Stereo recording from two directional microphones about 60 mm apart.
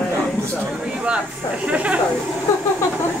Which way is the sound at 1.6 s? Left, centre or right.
Right.